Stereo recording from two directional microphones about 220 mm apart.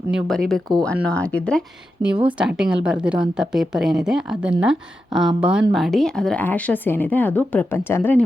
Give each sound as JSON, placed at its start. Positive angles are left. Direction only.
{"t": 0.1, "sound": "speech", "side_deg": 0}